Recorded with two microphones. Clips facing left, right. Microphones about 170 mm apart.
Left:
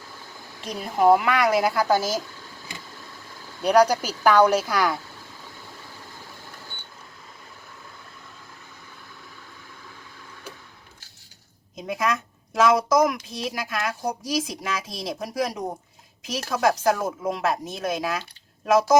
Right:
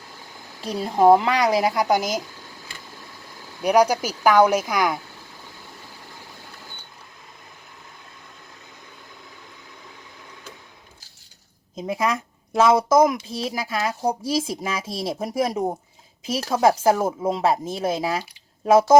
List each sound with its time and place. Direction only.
0.6 s a woman's voice: 30° right (ahead or behind)
3.6 s speech: 10° right (ahead or behind)
11.8 s a woman's voice: 30° right (ahead or behind)